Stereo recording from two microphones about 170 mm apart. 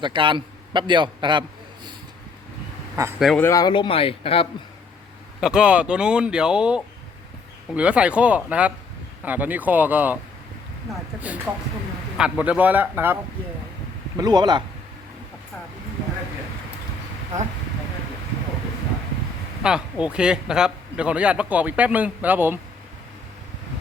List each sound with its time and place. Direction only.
0.0 s a man's voice: 30° right (ahead or behind)
3.2 s speech: centre (ahead or behind)
3.4 s speech: 20° left (ahead or behind)
5.4 s a man's voice: 5° right (ahead or behind)
11.3 s a man's voice: 10° right (ahead or behind)
14.2 s speech: 25° right (ahead or behind)
19.6 s a man's voice: 5° right (ahead or behind)